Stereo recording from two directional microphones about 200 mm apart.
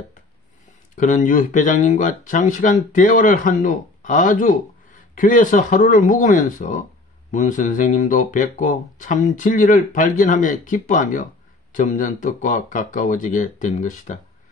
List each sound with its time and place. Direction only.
0.9 s speech: 40° left (ahead or behind)